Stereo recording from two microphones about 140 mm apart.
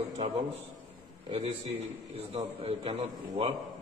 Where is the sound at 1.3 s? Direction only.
45° right (ahead or behind).